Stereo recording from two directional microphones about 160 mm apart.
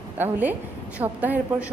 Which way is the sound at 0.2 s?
10° right (ahead or behind).